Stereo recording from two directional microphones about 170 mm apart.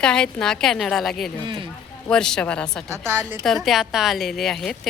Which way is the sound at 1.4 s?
30° right (ahead or behind).